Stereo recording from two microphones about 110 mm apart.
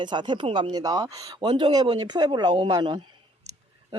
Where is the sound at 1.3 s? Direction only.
45° right (ahead or behind).